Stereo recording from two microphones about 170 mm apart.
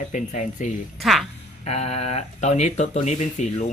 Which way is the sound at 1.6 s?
40° left (ahead or behind).